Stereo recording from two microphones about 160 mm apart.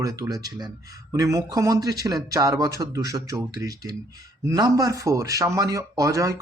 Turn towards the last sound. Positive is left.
turn(degrees=-20)  # may be behind; listen again after turning